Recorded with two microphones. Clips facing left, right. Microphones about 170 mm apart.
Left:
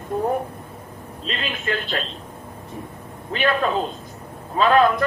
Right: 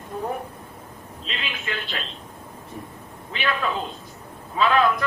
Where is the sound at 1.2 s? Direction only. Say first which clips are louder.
Left 5 dB; 40° left (ahead or behind).